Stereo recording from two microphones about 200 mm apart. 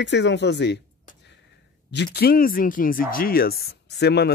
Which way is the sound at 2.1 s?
50° left (ahead or behind).